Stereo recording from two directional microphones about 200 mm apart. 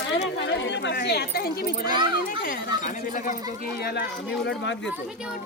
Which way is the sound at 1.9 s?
25° right (ahead or behind).